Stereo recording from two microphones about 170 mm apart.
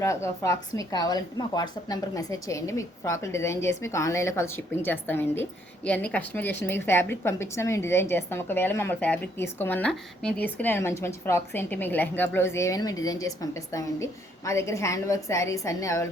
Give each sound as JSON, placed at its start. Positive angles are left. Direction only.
{"t": 0.0, "sound": "a woman's voice", "side_deg": 15}